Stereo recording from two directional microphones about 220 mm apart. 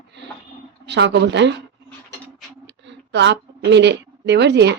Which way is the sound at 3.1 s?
55° right (ahead or behind).